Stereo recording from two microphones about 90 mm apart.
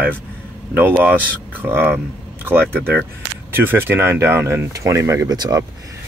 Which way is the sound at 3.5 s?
25° right (ahead or behind).